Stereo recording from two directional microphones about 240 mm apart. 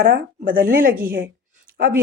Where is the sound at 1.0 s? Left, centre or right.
Right.